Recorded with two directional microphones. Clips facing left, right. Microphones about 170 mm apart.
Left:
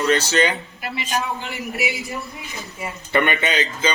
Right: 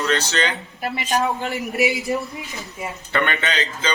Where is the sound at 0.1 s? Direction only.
10° left (ahead or behind).